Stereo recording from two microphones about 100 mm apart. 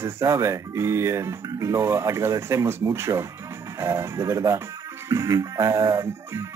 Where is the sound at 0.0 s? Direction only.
30° right (ahead or behind).